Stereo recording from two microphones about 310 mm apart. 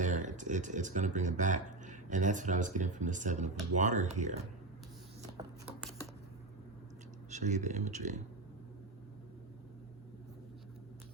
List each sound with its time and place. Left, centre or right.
0.0 s speech: right
5.4 s a sound: centre
7.3 s speech: right